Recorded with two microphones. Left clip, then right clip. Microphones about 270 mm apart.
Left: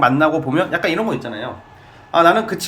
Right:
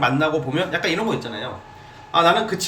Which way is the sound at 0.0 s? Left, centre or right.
Centre.